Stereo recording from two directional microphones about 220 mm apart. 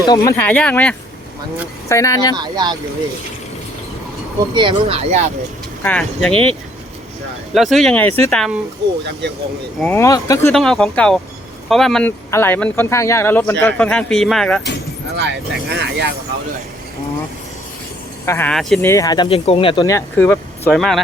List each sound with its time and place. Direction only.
0.1 s speech: 15° left (ahead or behind)
2.3 s speech: 20° right (ahead or behind)
4.5 s speech: 25° right (ahead or behind)
5.8 s speech: 5° left (ahead or behind)
7.5 s speech: centre (ahead or behind)
9.7 s speech: 5° left (ahead or behind)
10.0 s speech: 15° left (ahead or behind)
10.5 s speech: centre (ahead or behind)
15.1 s speech: 50° right (ahead or behind)
18.3 s speech: 10° left (ahead or behind)
18.9 s speech: 15° left (ahead or behind)